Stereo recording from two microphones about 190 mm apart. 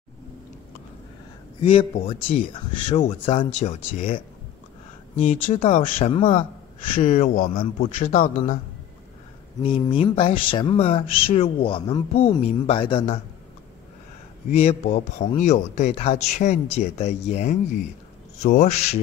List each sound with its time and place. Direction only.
1.6 s a man's voice: 30° left (ahead or behind)
7.0 s speech: 40° left (ahead or behind)
9.6 s speech: 25° left (ahead or behind)
14.5 s a man's voice: 35° left (ahead or behind)